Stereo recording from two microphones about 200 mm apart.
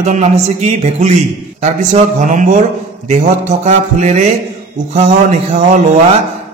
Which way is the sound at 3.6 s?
35° right (ahead or behind).